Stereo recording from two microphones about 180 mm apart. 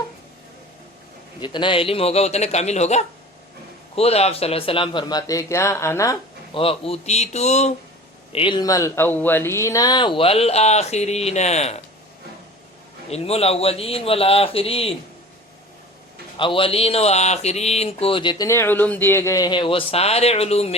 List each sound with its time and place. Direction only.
1.4 s speech: 25° left (ahead or behind)
6.5 s speech: 30° left (ahead or behind)
13.1 s speech: 35° left (ahead or behind)
16.4 s speech: 30° left (ahead or behind)